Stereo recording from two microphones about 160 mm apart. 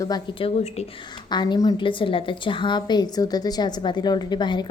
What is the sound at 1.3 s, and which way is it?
A woman's voice, 25° left (ahead or behind).